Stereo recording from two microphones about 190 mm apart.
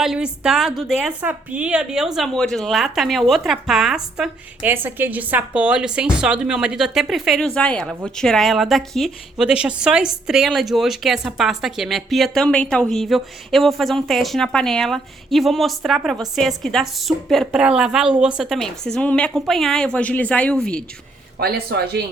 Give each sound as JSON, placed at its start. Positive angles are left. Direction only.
{"t": 0.0, "sound": "a woman's voice", "side_deg": -5}
{"t": 21.3, "sound": "speech", "side_deg": -55}